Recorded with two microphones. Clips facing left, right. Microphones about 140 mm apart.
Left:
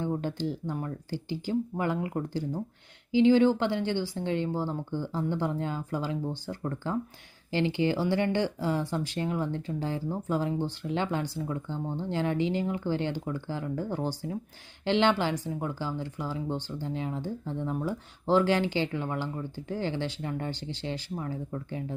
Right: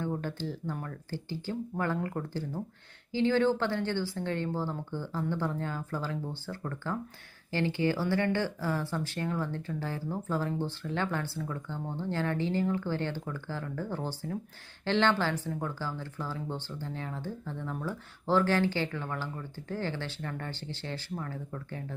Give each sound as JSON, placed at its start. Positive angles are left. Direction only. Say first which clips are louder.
{"t": 0.0, "sound": "speech", "louder": "left 4 dB", "side_deg": 20}